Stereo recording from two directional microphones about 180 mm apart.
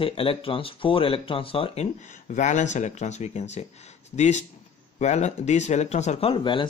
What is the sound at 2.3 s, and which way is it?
Speech, 40° left (ahead or behind).